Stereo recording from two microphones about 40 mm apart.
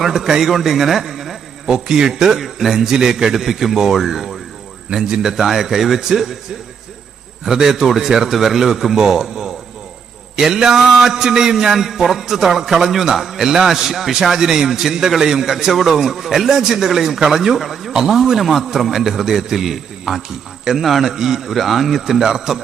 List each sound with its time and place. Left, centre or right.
0.0 s a man's voice: centre
2.4 s a man's voice: centre
2.9 s a man's voice: centre
3.3 s a man's voice: centre
7.4 s a man's voice: centre
17.6 s a man's voice: centre